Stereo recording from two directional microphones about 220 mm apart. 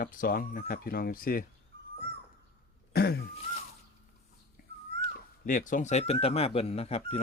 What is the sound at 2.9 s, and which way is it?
Throat clearing, 45° left (ahead or behind).